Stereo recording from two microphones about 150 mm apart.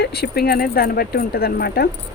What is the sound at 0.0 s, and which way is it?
Speech, 90° left.